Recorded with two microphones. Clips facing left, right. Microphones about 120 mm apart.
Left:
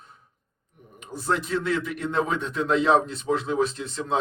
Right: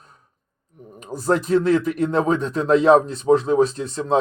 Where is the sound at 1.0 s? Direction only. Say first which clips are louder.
Right 6 dB; 40° right (ahead or behind).